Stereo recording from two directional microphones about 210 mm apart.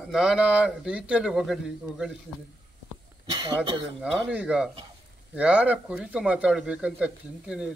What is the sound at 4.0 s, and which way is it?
A man's voice, 5° right (ahead or behind).